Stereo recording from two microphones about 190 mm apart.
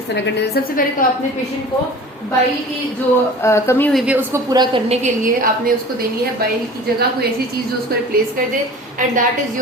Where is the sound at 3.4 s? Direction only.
15° left (ahead or behind).